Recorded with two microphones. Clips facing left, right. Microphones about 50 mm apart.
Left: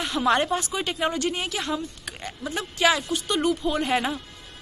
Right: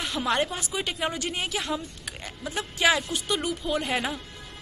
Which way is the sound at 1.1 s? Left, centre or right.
Centre.